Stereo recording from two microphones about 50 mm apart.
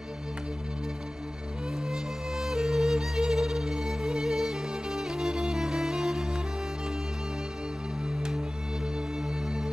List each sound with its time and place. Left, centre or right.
1.9 s music: centre